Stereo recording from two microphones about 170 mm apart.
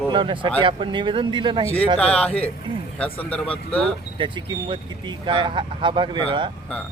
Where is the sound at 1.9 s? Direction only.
5° left (ahead or behind).